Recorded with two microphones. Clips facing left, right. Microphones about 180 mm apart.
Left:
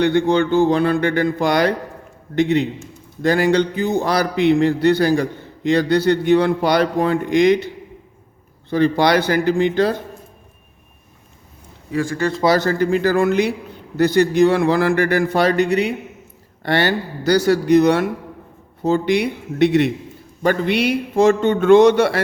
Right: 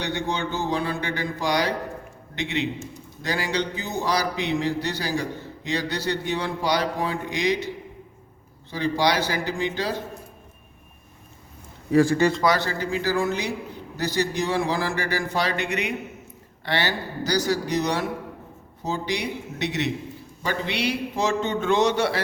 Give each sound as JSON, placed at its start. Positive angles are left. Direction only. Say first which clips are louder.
{"t": 0.0, "sound": "speech", "louder": "left 12 dB", "side_deg": 55}
{"t": 2.3, "sound": "a man's voice", "louder": "left 11 dB", "side_deg": 45}
{"t": 3.2, "sound": "speech", "louder": "left 11 dB", "side_deg": 55}
{"t": 8.7, "sound": "speech", "louder": "left 8 dB", "side_deg": 55}
{"t": 11.9, "sound": "a man's voice", "louder": "right 4 dB", "side_deg": -35}
{"t": 12.5, "sound": "speech", "louder": "left 9 dB", "side_deg": 50}
{"t": 15.5, "sound": "speech", "louder": "left 10 dB", "side_deg": 35}
{"t": 16.6, "sound": "speech", "louder": "left 8 dB", "side_deg": 55}